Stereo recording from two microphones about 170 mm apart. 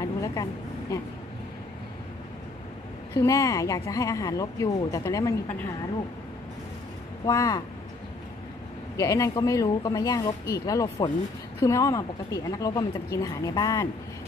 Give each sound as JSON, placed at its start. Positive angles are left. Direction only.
{"t": 0.0, "sound": "vehicle", "side_deg": 20}
{"t": 3.2, "sound": "speech", "side_deg": 20}
{"t": 7.2, "sound": "speech", "side_deg": 20}
{"t": 8.9, "sound": "speech", "side_deg": 20}